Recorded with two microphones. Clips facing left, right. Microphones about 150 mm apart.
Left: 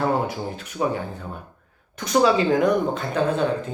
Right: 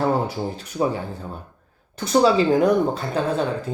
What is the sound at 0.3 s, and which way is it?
Speech, 35° right (ahead or behind).